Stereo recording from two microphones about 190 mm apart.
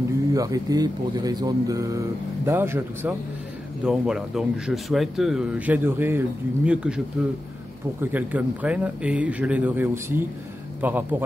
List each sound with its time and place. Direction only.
0.3 s speech: 20° right (ahead or behind)
8.0 s speech: 10° right (ahead or behind)